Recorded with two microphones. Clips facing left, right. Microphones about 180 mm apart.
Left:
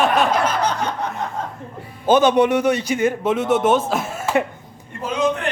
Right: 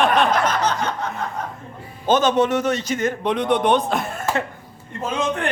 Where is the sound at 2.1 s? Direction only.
10° left (ahead or behind).